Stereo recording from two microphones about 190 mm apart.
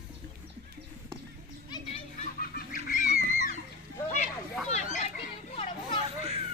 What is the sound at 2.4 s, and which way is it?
Goose, 45° left (ahead or behind).